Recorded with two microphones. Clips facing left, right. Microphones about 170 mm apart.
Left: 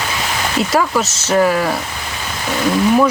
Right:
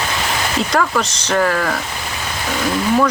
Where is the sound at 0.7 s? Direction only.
5° left (ahead or behind).